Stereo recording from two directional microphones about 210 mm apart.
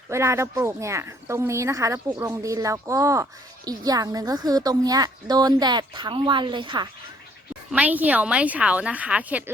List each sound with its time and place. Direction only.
0.1 s a woman's voice: 15° right (ahead or behind)
7.7 s speech: 5° right (ahead or behind)